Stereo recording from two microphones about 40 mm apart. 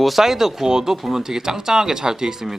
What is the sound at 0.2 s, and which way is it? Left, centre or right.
Speech, centre.